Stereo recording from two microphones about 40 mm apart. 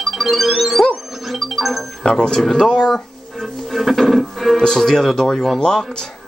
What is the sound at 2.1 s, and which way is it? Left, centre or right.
Speech, centre.